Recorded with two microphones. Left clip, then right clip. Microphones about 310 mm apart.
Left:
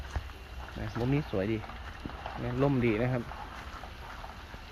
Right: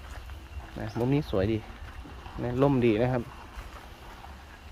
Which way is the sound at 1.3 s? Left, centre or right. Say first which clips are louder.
Right 4 dB; right.